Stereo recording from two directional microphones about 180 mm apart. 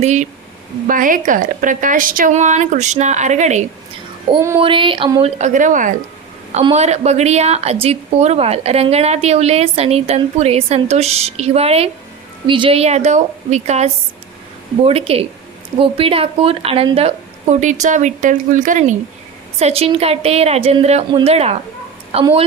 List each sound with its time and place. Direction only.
0.0 s a woman's voice: 40° right (ahead or behind)
4.3 s a sound: 25° right (ahead or behind)
5.4 s a woman's voice: 45° right (ahead or behind)